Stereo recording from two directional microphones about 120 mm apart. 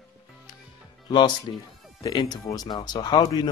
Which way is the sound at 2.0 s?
35° left (ahead or behind).